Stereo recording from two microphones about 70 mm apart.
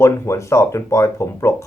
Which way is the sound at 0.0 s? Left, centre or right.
Left.